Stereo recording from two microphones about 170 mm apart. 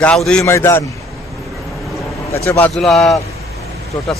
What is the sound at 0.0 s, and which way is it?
Speech, 5° left (ahead or behind).